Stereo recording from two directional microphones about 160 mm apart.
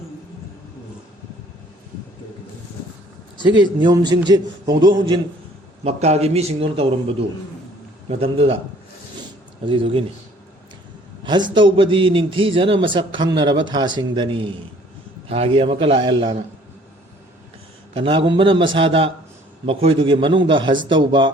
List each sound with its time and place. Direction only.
3.4 s a man's voice: 30° right (ahead or behind)
5.8 s a man's voice: 40° right (ahead or behind)
9.6 s a man's voice: 35° right (ahead or behind)
11.2 s a man's voice: 30° right (ahead or behind)
17.9 s a man's voice: 30° right (ahead or behind)